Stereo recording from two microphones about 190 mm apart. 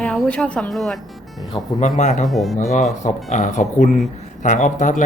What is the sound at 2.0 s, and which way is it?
Speech, 40° left (ahead or behind).